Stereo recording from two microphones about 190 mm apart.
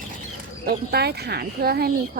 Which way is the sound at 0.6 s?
55° right (ahead or behind).